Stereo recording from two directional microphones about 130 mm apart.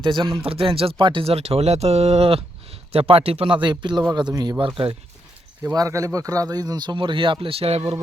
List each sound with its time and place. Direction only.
0.0 s speech: 40° right (ahead or behind)
5.7 s speech: 25° right (ahead or behind); by 7.9 s 45° right (ahead or behind)